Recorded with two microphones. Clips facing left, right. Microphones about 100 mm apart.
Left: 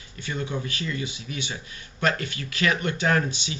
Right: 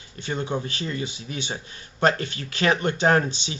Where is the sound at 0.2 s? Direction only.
30° right (ahead or behind).